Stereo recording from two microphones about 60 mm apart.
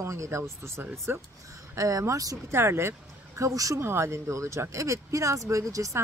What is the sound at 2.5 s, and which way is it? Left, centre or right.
Speech, right.